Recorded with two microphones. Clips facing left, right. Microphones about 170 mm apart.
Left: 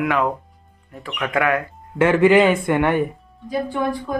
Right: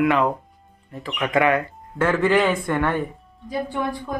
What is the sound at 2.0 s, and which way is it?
Speech, 15° left (ahead or behind).